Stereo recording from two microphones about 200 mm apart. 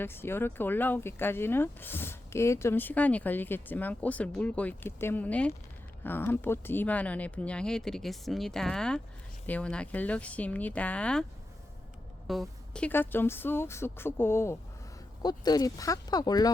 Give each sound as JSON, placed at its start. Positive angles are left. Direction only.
{"t": 0.0, "sound": "speech", "side_deg": 10}
{"t": 12.3, "sound": "speech", "side_deg": 0}